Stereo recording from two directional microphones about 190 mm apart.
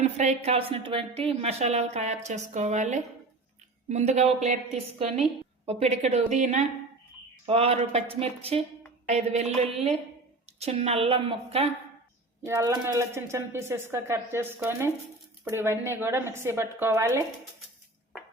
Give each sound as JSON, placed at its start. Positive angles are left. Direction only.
{"t": 0.0, "sound": "a woman's voice", "side_deg": -35}
{"t": 10.6, "sound": "a woman's voice", "side_deg": -35}
{"t": 12.5, "sound": "speech", "side_deg": -15}